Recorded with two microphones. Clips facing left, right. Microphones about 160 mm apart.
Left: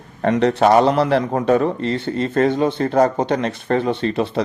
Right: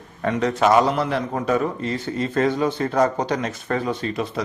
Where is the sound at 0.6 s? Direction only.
40° left (ahead or behind).